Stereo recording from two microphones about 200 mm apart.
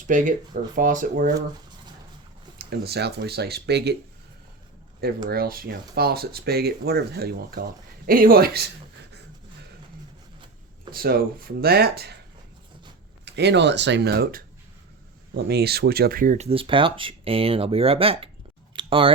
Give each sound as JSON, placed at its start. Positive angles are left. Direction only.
{"t": 0.1, "sound": "speech", "side_deg": -40}
{"t": 2.6, "sound": "speech", "side_deg": -50}
{"t": 5.3, "sound": "speech", "side_deg": -50}
{"t": 10.9, "sound": "speech", "side_deg": -45}
{"t": 13.2, "sound": "speech", "side_deg": -55}
{"t": 18.8, "sound": "clicking", "side_deg": -25}